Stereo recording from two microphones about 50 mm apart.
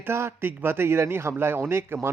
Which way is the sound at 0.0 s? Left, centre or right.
Right.